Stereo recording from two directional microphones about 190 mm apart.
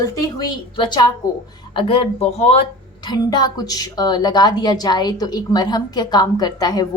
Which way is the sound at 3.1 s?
20° left (ahead or behind).